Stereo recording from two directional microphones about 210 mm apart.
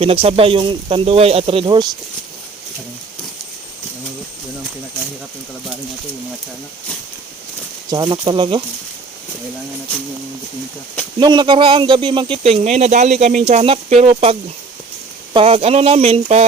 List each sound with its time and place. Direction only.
0.0 s speech: 25° right (ahead or behind)
7.9 s speech: 20° right (ahead or behind)
11.2 s speech: 20° right (ahead or behind)